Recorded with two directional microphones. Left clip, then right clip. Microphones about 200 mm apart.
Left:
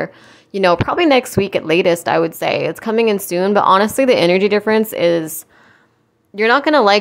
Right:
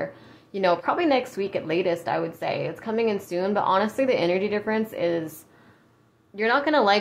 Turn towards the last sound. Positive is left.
turn(degrees=40)  # may be behind; listen again after turning